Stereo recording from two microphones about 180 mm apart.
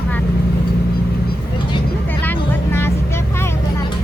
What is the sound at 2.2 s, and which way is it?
Vehicle, 10° left (ahead or behind).